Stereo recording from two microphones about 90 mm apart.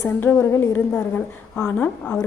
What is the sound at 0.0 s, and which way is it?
A woman's voice, 30° left (ahead or behind).